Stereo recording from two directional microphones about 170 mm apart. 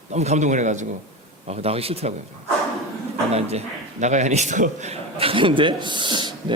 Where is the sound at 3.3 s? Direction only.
40° right (ahead or behind).